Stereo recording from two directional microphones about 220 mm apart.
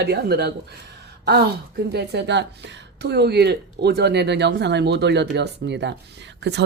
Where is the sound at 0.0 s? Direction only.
45° right (ahead or behind).